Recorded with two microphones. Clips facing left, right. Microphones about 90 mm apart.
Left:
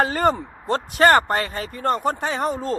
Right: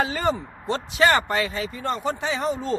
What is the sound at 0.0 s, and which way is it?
Speech, 50° left (ahead or behind).